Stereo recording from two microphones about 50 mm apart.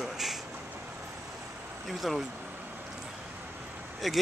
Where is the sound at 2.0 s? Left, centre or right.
Centre.